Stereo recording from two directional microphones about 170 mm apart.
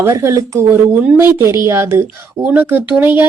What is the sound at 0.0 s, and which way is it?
Speech, 15° right (ahead or behind).